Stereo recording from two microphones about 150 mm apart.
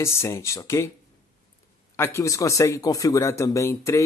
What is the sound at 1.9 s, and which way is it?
Speech, 15° left (ahead or behind).